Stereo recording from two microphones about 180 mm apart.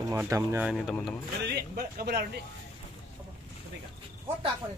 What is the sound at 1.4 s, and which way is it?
Speech, 65° right (ahead or behind).